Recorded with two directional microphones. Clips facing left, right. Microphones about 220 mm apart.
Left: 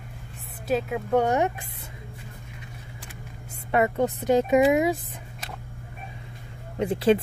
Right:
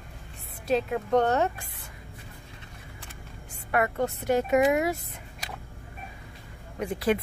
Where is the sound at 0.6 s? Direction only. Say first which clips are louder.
Even; centre (ahead or behind).